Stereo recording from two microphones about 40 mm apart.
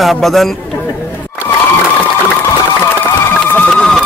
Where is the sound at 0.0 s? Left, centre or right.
Centre.